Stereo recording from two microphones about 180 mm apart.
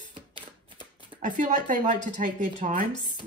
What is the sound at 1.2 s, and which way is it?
A woman's voice, 45° right (ahead or behind).